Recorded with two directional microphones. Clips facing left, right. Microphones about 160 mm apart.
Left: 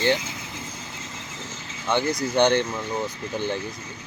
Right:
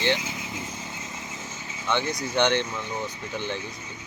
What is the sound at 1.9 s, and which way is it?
Speech, 40° left (ahead or behind).